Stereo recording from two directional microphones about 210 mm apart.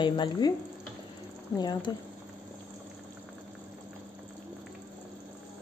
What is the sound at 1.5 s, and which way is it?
Speech, 20° left (ahead or behind).